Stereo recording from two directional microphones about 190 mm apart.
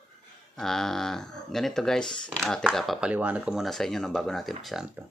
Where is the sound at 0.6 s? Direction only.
Centre (ahead or behind).